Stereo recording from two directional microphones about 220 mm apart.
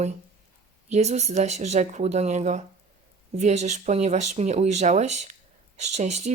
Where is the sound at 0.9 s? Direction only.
30° right (ahead or behind).